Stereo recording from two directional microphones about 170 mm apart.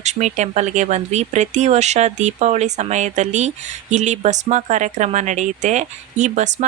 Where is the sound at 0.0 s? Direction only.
40° right (ahead or behind).